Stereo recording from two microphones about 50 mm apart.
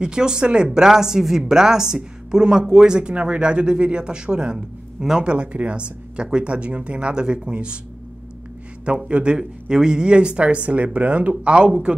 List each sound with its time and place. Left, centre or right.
0.0 s a woman's voice: centre
8.8 s speech: right